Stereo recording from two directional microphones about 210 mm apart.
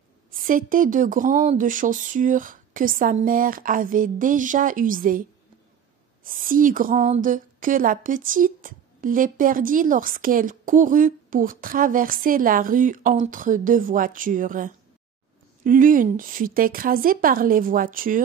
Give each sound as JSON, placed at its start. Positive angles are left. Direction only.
{"t": 0.3, "sound": "speech", "side_deg": -40}
{"t": 6.2, "sound": "speech", "side_deg": -40}